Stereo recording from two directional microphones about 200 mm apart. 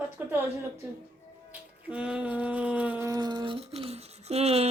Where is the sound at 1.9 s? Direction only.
5° right (ahead or behind).